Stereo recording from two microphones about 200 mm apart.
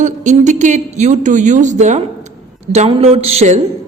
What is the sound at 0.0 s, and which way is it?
A woman's voice, 35° right (ahead or behind).